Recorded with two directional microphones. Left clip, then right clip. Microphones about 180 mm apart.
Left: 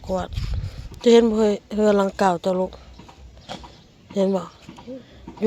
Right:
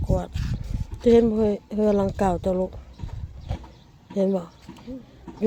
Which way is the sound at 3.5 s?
Centre (ahead or behind).